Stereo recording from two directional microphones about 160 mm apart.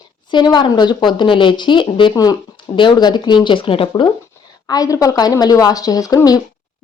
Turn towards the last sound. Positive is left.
turn(degrees=25)  # may be behind; listen again after turning